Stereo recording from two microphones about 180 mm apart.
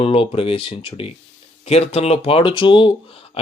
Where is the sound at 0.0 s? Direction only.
30° left (ahead or behind).